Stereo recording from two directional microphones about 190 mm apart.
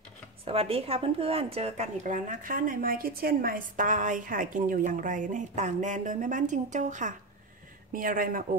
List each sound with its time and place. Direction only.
0.5 s a woman's voice: 30° right (ahead or behind); by 8.5 s 45° right (ahead or behind)